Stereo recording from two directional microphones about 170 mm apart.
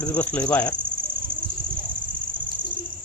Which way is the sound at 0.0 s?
10° left (ahead or behind).